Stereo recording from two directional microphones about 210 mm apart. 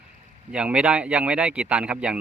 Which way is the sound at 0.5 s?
5° right (ahead or behind).